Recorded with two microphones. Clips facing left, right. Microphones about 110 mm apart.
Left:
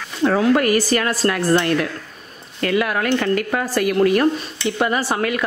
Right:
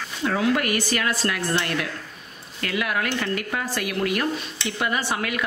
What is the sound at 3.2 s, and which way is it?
Speech, 55° left (ahead or behind).